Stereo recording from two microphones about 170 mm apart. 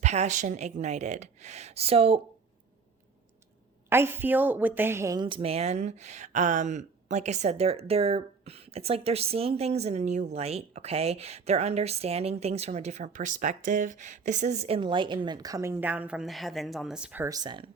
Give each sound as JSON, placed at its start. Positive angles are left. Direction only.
{"t": 0.0, "sound": "a woman's voice", "side_deg": -40}
{"t": 3.8, "sound": "a woman's voice", "side_deg": -15}
{"t": 17.2, "sound": "speech", "side_deg": -25}